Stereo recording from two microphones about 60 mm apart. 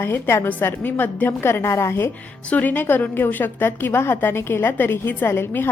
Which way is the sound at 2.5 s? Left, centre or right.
Left.